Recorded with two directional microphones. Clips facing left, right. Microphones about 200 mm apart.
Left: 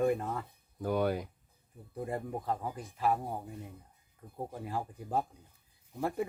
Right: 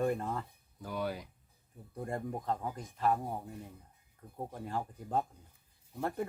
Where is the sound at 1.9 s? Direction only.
5° left (ahead or behind).